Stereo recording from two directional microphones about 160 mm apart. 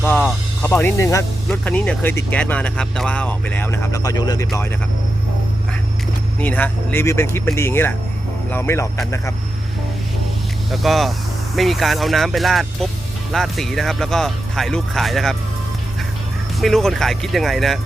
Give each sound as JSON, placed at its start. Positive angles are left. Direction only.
{"t": 0.6, "sound": "speech", "side_deg": 15}
{"t": 1.5, "sound": "speech", "side_deg": 5}
{"t": 6.4, "sound": "speech", "side_deg": 10}
{"t": 10.7, "sound": "speech", "side_deg": 0}
{"t": 16.6, "sound": "speech", "side_deg": 0}